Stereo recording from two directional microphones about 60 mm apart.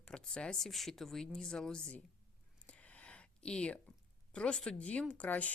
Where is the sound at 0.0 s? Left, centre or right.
Centre.